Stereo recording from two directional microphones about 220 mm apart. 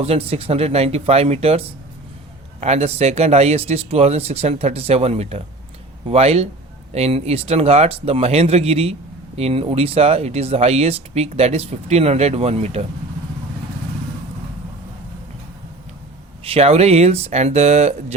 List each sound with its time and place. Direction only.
0.0 s speech: 25° right (ahead or behind)
16.4 s speech: 25° right (ahead or behind)